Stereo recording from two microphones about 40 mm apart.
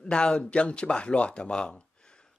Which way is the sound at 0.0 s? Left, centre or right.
Left.